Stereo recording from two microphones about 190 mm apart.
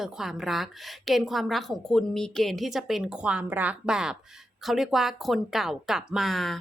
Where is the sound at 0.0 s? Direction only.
Centre (ahead or behind).